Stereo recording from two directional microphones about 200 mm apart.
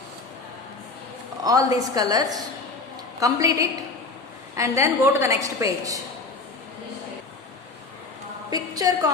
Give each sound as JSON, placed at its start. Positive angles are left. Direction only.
{"t": 1.5, "sound": "a woman's voice", "side_deg": -20}
{"t": 8.4, "sound": "a woman's voice", "side_deg": -20}